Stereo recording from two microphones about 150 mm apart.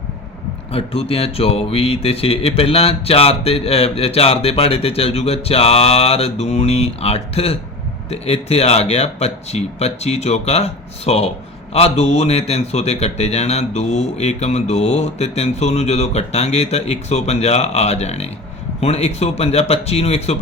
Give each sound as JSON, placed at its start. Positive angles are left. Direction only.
{"t": 0.7, "sound": "a man's voice", "side_deg": 40}